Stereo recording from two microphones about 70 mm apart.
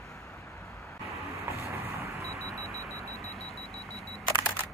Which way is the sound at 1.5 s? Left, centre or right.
Right.